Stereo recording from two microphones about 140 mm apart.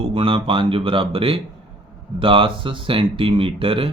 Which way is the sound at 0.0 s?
40° right (ahead or behind).